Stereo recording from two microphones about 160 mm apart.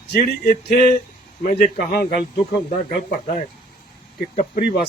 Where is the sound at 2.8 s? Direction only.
65° left (ahead or behind).